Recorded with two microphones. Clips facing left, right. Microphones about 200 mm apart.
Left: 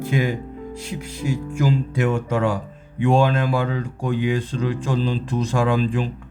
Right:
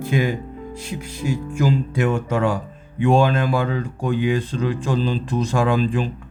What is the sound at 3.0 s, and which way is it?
Speech, 50° right (ahead or behind).